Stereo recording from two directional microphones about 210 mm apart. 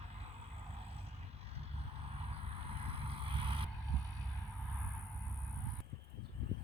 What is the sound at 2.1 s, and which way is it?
Vehicle, 25° right (ahead or behind).